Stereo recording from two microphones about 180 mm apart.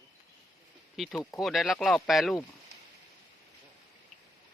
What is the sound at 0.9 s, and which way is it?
Speech, centre (ahead or behind).